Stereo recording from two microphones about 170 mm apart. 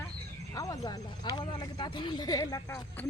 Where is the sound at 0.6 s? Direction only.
20° left (ahead or behind).